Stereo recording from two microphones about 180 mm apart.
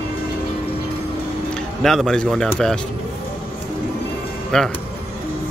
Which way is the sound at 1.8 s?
Centre (ahead or behind).